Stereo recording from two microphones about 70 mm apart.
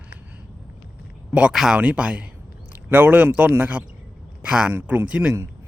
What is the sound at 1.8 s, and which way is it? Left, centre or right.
A man's voice, centre.